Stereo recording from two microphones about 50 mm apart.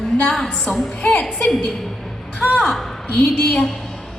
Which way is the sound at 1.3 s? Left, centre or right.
Centre.